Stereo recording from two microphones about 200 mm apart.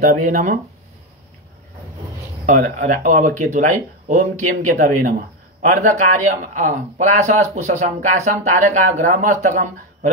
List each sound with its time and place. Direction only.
0.0 s speech: 40° right (ahead or behind)
2.4 s speech: 40° right (ahead or behind)